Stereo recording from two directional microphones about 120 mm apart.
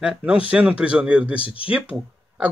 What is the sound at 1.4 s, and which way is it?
Speech, 50° left (ahead or behind).